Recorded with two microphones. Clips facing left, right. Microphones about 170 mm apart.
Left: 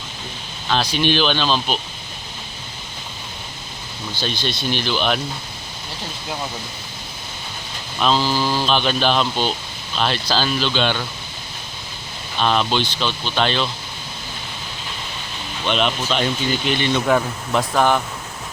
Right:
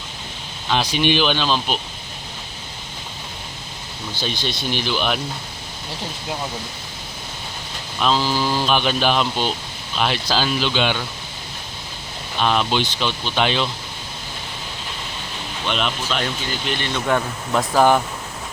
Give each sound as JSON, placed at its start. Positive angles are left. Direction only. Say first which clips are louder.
{"t": 0.7, "sound": "speech", "louder": "even", "side_deg": -15}
{"t": 4.1, "sound": "speech", "louder": "left 1 dB", "side_deg": -15}
{"t": 8.0, "sound": "speech", "louder": "left 1 dB", "side_deg": -5}
{"t": 8.3, "sound": "speech", "louder": "left 1 dB", "side_deg": 10}
{"t": 8.6, "sound": "speech", "louder": "even", "side_deg": -10}
{"t": 12.4, "sound": "speech", "louder": "even", "side_deg": -10}
{"t": 15.6, "sound": "speech", "louder": "left 3 dB", "side_deg": -5}